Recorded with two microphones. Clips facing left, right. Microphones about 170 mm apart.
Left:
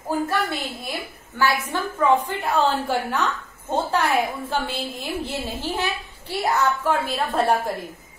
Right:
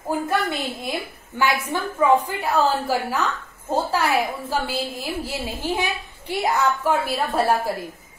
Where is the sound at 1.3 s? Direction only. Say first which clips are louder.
Even; 15° right (ahead or behind).